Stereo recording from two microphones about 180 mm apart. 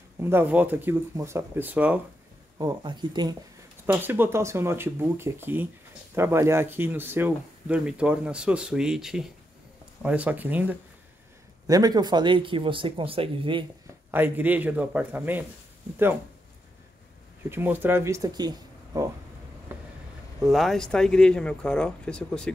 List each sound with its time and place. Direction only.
0.2 s speech: 10° right (ahead or behind)
2.6 s speech: 25° right (ahead or behind)
3.8 s speech: 10° right (ahead or behind)
11.6 s speech: 20° right (ahead or behind)
14.1 s speech: 10° right (ahead or behind)
17.5 s speech: 10° right (ahead or behind)
20.3 s speech: centre (ahead or behind)